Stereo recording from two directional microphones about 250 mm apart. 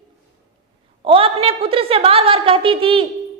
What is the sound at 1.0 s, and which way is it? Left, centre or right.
A woman's voice, right.